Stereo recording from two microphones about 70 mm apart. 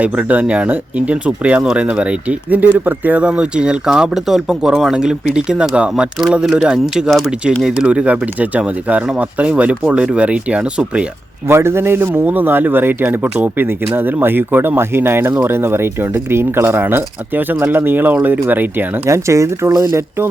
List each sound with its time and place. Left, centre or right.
0.0 s speech: right
3.2 s speech: centre
11.4 s speech: right
19.0 s speech: right